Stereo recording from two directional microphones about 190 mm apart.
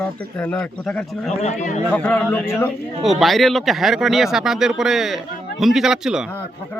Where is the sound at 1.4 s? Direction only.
40° left (ahead or behind).